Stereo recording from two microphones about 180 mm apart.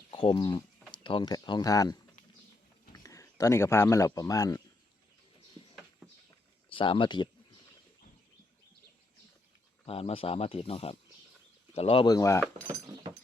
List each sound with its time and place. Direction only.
0.1 s speech: 30° left (ahead or behind)
6.7 s speech: 30° left (ahead or behind)
9.8 s speech: 30° left (ahead or behind)